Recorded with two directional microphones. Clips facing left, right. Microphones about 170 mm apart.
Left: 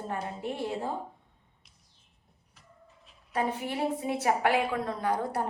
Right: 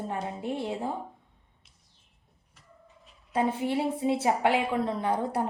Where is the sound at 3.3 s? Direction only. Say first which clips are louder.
Right 4 dB; 25° right (ahead or behind).